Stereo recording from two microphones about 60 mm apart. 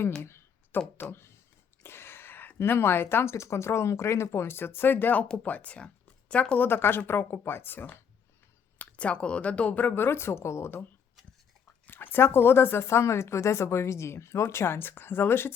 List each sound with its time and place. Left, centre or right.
0.2 s a sound: left
1.1 s speech: left
1.8 s a sound: left
2.6 s speech: left; by 6.6 s centre
6.6 s speech: left
8.8 s speech: left
11.9 s speech: left